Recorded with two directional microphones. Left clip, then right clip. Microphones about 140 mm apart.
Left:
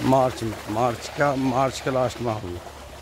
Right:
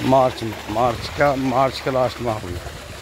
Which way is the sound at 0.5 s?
75° right (ahead or behind).